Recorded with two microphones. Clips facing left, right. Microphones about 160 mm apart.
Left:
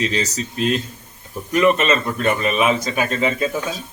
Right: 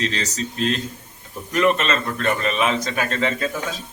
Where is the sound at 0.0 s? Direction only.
10° left (ahead or behind).